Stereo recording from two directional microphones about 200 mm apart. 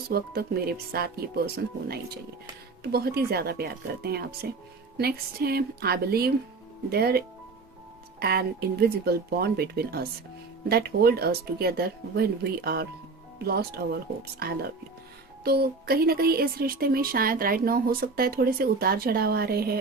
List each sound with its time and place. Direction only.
0.1 s speech: 50° right (ahead or behind)
8.2 s speech: 50° right (ahead or behind)